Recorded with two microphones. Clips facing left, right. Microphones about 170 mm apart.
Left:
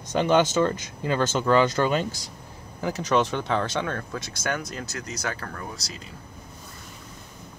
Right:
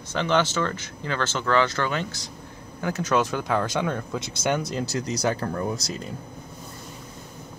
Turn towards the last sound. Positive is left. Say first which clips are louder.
# right 8 dB
turn(degrees=-45)  # may be behind; listen again after turning